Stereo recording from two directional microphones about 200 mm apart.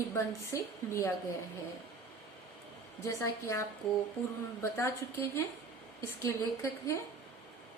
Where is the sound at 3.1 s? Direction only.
15° left (ahead or behind).